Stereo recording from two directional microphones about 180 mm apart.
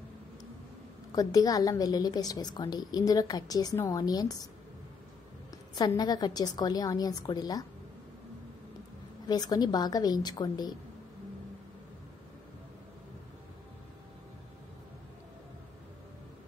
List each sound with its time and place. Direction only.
1.1 s a woman's voice: 20° left (ahead or behind)
5.8 s a woman's voice: 25° left (ahead or behind)
9.3 s a woman's voice: 20° left (ahead or behind)